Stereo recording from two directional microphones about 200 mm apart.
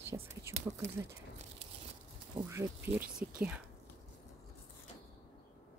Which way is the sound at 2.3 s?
15° right (ahead or behind).